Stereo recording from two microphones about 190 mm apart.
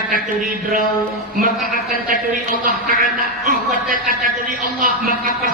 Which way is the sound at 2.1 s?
45° right (ahead or behind).